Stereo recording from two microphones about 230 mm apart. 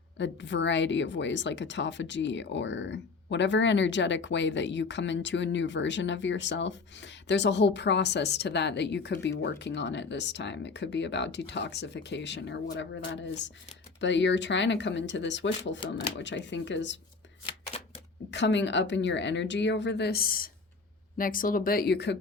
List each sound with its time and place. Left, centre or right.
0.2 s a woman's voice: left
17.7 s shuffling cards: left
18.3 s a woman's voice: left